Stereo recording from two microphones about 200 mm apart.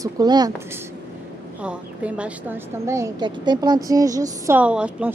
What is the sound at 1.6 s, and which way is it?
A woman's voice, 5° right (ahead or behind).